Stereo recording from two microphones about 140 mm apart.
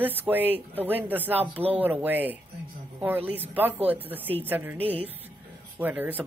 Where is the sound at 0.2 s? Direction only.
10° right (ahead or behind).